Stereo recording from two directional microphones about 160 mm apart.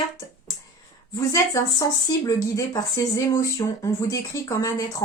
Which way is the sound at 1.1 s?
20° left (ahead or behind).